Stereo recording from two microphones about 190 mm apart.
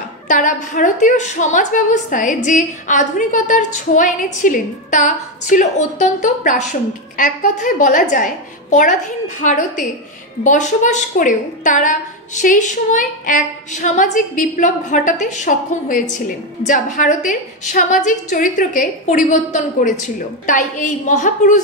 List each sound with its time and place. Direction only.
0.3 s a woman's voice: 40° left (ahead or behind)